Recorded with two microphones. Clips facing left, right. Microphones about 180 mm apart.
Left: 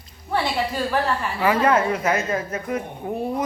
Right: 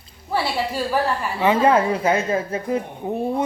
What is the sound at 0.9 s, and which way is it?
A woman's voice, 20° right (ahead or behind).